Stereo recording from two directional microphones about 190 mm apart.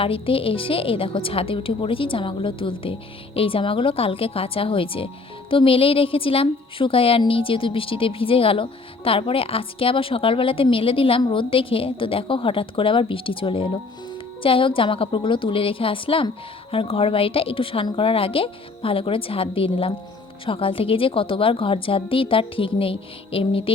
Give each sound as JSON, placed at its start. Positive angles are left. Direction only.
{"t": 0.0, "sound": "a woman's voice", "side_deg": 30}